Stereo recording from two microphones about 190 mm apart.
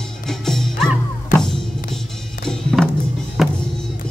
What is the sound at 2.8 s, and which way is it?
Music, centre (ahead or behind).